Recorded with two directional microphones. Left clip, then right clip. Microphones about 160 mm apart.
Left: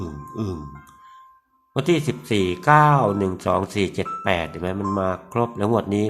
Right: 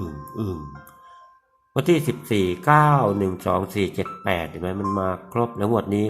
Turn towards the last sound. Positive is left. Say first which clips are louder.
# left 1 dB
turn(degrees=5)  # may be behind; listen again after turning